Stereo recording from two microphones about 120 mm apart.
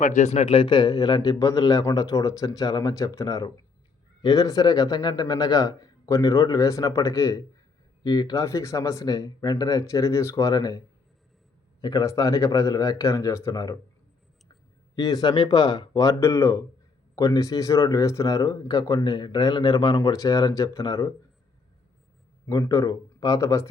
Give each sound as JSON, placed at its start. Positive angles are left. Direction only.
{"t": 0.0, "sound": "speech", "side_deg": 80}
{"t": 0.4, "sound": "a man's voice", "side_deg": 45}
{"t": 14.9, "sound": "speech", "side_deg": 30}
{"t": 22.4, "sound": "speech", "side_deg": 25}